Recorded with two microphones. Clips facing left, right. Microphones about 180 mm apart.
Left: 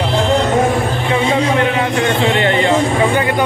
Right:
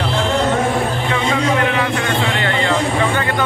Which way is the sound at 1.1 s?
25° left (ahead or behind).